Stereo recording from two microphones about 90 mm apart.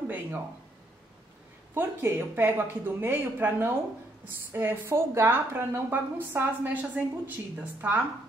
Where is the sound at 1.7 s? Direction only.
25° right (ahead or behind).